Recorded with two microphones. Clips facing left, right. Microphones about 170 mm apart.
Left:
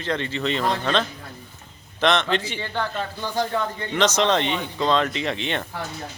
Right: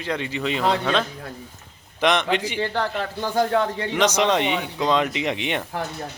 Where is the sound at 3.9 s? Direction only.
10° right (ahead or behind).